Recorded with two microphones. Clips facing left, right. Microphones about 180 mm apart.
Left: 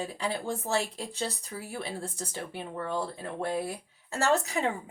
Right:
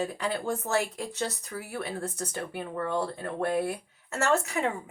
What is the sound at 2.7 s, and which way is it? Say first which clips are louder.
Speech: right 3 dB; 60° right (ahead or behind).